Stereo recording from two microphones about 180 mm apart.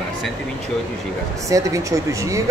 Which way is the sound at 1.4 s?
15° right (ahead or behind).